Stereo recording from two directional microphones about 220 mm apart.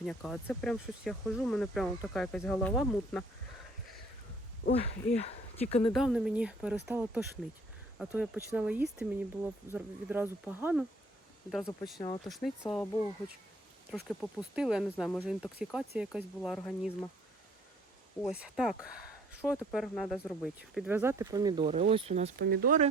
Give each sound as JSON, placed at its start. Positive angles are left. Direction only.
{"t": 0.0, "sound": "speech", "side_deg": 5}
{"t": 4.7, "sound": "speech", "side_deg": 30}
{"t": 5.9, "sound": "speech", "side_deg": 0}
{"t": 11.9, "sound": "speech", "side_deg": 20}
{"t": 12.2, "sound": "speech", "side_deg": 0}
{"t": 18.2, "sound": "speech", "side_deg": -5}